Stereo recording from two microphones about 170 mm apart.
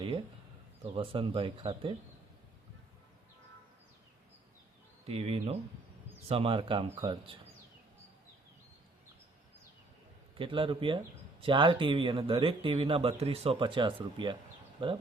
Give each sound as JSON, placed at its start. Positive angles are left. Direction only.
{"t": 0.9, "sound": "speech", "side_deg": -30}
{"t": 5.0, "sound": "speech", "side_deg": -35}
{"t": 10.3, "sound": "speech", "side_deg": -30}